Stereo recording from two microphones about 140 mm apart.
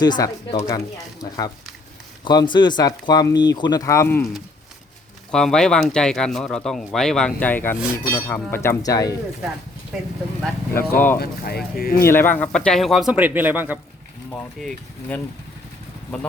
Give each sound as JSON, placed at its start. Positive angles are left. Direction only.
{"t": 0.0, "sound": "speech", "side_deg": 30}
{"t": 2.2, "sound": "speech", "side_deg": 30}
{"t": 5.3, "sound": "speech", "side_deg": 5}
{"t": 10.8, "sound": "speech", "side_deg": 15}
{"t": 11.2, "sound": "speech", "side_deg": 90}
{"t": 12.0, "sound": "speech", "side_deg": 15}
{"t": 14.6, "sound": "speech", "side_deg": 10}